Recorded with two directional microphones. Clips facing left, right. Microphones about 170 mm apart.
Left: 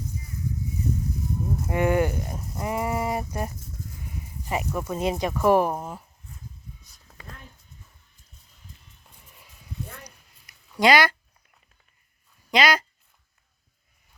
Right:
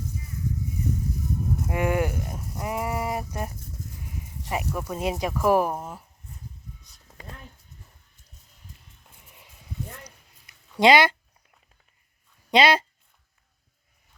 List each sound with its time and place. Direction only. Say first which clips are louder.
1.6 s speech: left 3 dB; 5° right (ahead or behind)
10.0 s a sound: even; 25° right (ahead or behind)
12.5 s speech: right 2 dB; 30° right (ahead or behind)